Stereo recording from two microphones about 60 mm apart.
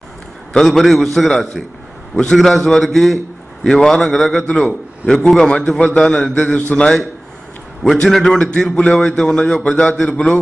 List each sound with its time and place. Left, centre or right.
0.6 s a man's voice: centre
8.0 s speech: centre